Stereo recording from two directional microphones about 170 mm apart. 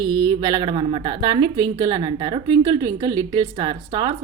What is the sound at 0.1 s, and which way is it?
A woman's voice, 25° right (ahead or behind).